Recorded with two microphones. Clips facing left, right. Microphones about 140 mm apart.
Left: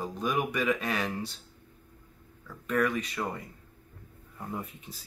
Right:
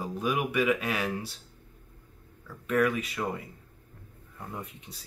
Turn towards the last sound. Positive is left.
turn(degrees=0)  # may be behind; listen again after turning